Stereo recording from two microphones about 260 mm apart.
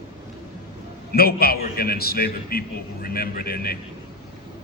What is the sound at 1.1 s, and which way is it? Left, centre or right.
A man's voice, left.